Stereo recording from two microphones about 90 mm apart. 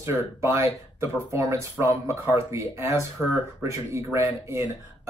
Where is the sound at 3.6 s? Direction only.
30° right (ahead or behind).